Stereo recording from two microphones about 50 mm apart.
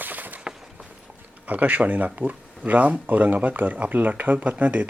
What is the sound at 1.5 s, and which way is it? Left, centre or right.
Speech, right.